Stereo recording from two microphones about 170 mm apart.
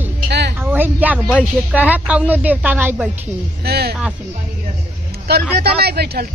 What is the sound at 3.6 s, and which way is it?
Speech, 70° right (ahead or behind).